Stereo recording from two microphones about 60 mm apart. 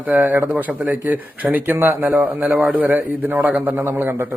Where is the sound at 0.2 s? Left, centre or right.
Right.